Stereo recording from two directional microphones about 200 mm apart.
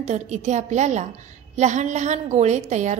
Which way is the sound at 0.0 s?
35° right (ahead or behind).